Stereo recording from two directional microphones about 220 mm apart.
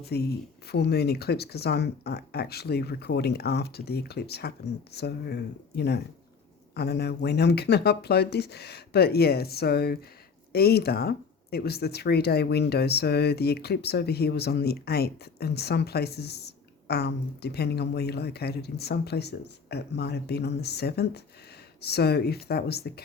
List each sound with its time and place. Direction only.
0.0 s speech: 45° left (ahead or behind)